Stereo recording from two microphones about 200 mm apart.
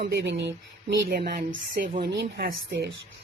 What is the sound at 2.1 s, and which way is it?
Speech, 55° right (ahead or behind).